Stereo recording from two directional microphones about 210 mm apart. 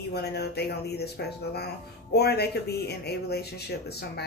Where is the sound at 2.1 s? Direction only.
50° left (ahead or behind).